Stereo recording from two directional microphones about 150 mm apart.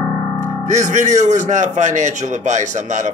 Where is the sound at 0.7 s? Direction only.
55° right (ahead or behind).